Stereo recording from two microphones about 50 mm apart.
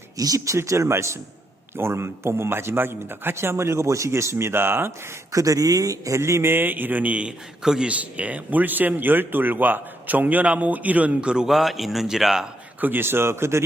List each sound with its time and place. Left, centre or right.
0.3 s a man's voice: right
1.7 s speech: right
6.1 s a man's voice: right
6.4 s speech: right
7.6 s speech: centre
7.9 s speech: right
11.4 s a man's voice: centre
12.8 s speech: right